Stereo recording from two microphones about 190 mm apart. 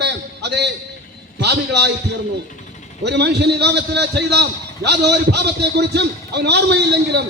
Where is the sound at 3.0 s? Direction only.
60° right (ahead or behind).